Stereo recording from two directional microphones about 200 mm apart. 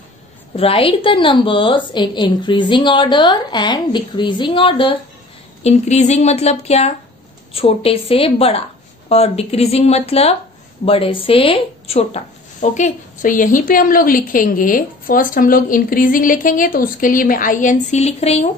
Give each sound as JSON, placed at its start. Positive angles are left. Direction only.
{"t": 0.6, "sound": "a woman's voice", "side_deg": 30}